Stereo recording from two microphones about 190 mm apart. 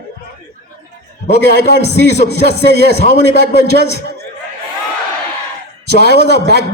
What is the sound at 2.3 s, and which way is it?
Speech, 60° left (ahead or behind).